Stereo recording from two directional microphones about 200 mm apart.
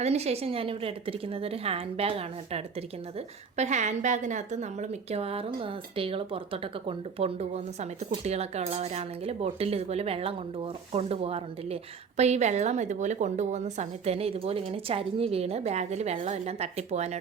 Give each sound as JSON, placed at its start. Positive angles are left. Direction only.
{"t": 0.0, "sound": "speech", "side_deg": -30}